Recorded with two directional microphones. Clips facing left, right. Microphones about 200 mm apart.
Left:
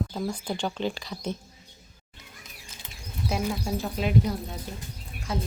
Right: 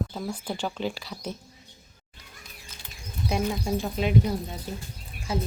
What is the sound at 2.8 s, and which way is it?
Bird, 20° left (ahead or behind).